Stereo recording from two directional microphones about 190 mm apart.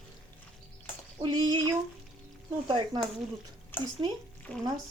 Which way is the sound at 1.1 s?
20° right (ahead or behind).